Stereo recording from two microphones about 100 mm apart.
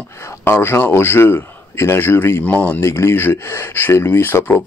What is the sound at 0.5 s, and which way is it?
Speech, 25° left (ahead or behind).